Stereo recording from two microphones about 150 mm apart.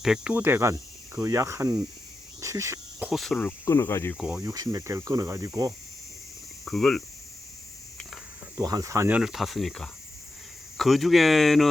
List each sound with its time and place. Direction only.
0.0 s speech: 5° right (ahead or behind)
3.1 s speech: centre (ahead or behind)
3.7 s speech: 20° left (ahead or behind)
4.2 s speech: 5° right (ahead or behind)
4.4 s speech: 25° right (ahead or behind)
6.7 s speech: centre (ahead or behind)
8.5 s speech: 25° right (ahead or behind); by 11.7 s centre (ahead or behind)